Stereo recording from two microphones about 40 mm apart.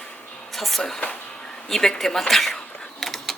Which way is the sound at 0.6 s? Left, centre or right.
Centre.